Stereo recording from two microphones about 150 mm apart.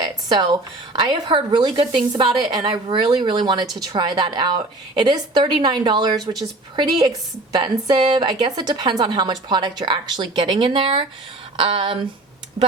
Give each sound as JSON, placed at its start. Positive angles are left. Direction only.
{"t": 0.0, "sound": "speech", "side_deg": -30}